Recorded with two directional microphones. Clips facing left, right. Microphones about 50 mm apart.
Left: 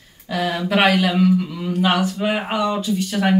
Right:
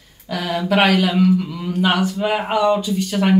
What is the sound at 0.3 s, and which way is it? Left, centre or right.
Speech, centre.